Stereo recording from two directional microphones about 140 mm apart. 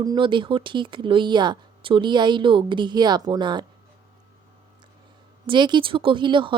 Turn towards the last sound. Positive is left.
turn(degrees=-35)  # may be behind; listen again after turning